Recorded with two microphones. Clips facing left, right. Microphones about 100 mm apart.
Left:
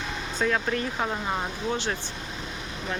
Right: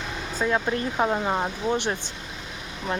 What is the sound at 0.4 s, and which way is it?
Speech, 20° right (ahead or behind).